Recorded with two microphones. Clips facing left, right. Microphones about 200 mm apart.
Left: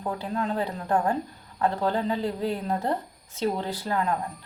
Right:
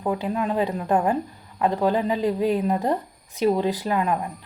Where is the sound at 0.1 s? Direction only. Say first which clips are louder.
Right 4 dB; 15° right (ahead or behind).